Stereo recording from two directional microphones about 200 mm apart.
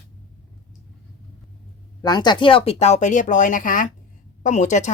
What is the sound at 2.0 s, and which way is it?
Speech, 20° left (ahead or behind).